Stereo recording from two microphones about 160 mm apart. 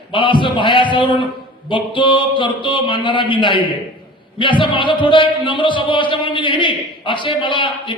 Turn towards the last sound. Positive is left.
turn(degrees=30)  # may be behind; listen again after turning